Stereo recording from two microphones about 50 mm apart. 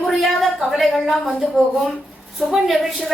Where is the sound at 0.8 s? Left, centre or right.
Centre.